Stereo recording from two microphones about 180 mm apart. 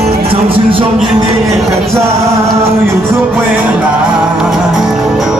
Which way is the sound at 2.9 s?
10° right (ahead or behind).